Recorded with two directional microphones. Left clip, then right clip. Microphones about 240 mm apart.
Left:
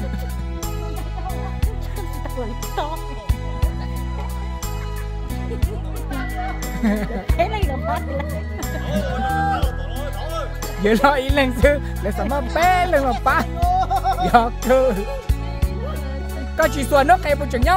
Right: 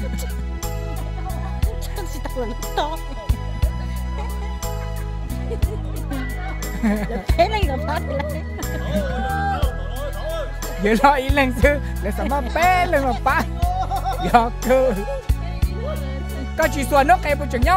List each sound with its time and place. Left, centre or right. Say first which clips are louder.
6.8 s speech: even; centre
7.3 s speech: right 3 dB; right
8.9 s music: left 2 dB; centre
10.2 s speech: even; centre
16.5 s speech: left 1 dB; centre